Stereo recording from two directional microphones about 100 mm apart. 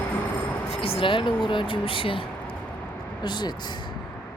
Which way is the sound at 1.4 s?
55° left (ahead or behind).